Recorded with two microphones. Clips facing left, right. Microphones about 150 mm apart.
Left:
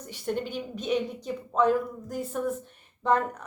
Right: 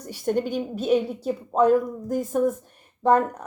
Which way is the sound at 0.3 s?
45° right (ahead or behind).